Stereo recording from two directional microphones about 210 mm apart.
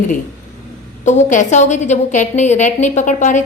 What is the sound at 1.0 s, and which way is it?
A woman's voice, 35° left (ahead or behind).